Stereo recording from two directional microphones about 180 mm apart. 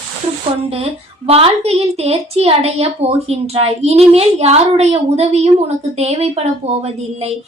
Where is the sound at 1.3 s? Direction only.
30° right (ahead or behind).